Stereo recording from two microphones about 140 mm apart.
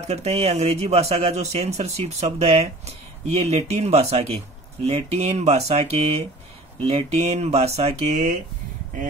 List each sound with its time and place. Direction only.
0.0 s speech: 50° right (ahead or behind)